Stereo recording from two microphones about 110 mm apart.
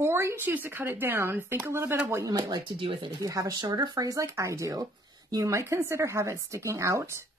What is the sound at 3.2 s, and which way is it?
A woman's voice, 30° right (ahead or behind).